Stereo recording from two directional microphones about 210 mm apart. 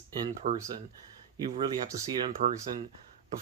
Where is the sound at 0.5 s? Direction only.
35° right (ahead or behind).